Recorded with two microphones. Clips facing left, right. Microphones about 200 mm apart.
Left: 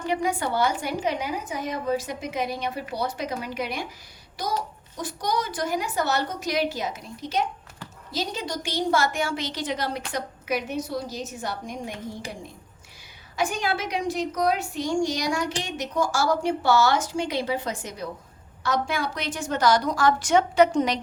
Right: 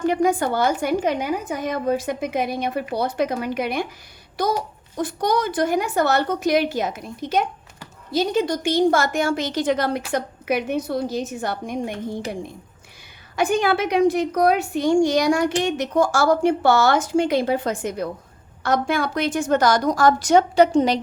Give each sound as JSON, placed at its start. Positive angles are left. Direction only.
{"t": 0.0, "sound": "a woman's voice", "side_deg": -45}
{"t": 4.9, "sound": "a woman's voice", "side_deg": -55}